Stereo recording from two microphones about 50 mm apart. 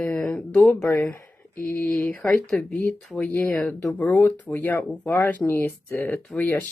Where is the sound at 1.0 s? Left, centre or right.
Left.